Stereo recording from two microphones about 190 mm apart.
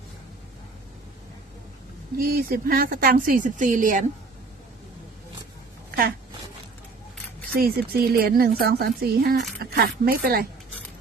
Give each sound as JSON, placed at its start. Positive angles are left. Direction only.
{"t": 2.1, "sound": "speech", "side_deg": -50}
{"t": 7.4, "sound": "speech", "side_deg": -55}